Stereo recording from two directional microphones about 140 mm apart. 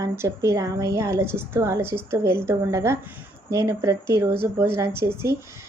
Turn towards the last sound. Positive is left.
turn(degrees=-20)  # may be behind; listen again after turning